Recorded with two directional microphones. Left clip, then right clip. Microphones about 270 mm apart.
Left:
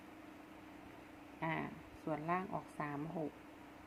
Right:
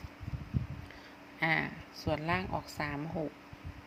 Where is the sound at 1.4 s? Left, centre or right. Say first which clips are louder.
Right 10 dB; right.